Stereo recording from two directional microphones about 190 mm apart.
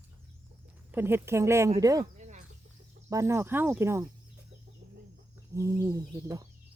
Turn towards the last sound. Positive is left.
turn(degrees=-20)  # may be behind; listen again after turning